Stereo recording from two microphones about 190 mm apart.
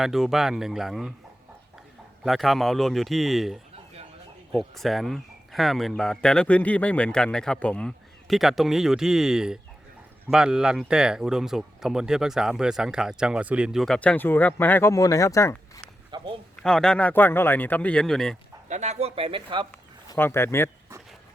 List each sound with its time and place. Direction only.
0.0 s speech: centre (ahead or behind)
2.2 s speech: centre (ahead or behind); by 15.8 s 15° left (ahead or behind)
16.1 s speech: 25° right (ahead or behind)
16.6 s a man's voice: 5° left (ahead or behind)
18.7 s speech: 35° right (ahead or behind)
20.1 s speech: 10° left (ahead or behind)